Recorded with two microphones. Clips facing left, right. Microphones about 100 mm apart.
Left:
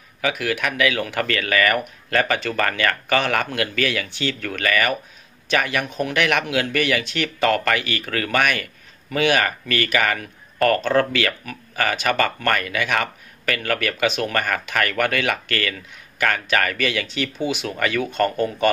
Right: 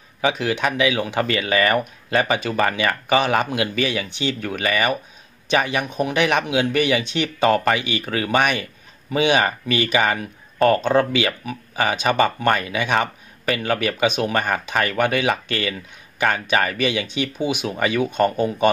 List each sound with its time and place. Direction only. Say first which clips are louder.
0.2 s speech: right 3 dB; 25° right (ahead or behind)